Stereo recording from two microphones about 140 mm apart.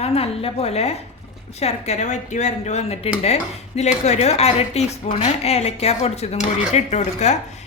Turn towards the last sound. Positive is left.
turn(degrees=55)  # may be behind; listen again after turning